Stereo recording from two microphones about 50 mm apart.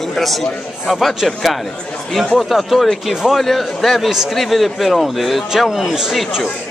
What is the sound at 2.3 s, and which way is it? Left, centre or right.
A man's voice, centre.